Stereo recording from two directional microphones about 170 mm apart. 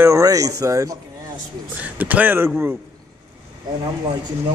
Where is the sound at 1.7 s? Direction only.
10° right (ahead or behind).